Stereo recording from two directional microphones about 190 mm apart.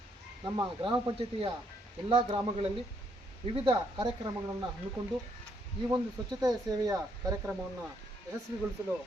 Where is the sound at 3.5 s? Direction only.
25° right (ahead or behind).